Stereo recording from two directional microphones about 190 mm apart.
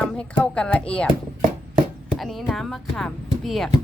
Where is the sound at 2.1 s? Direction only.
Centre (ahead or behind).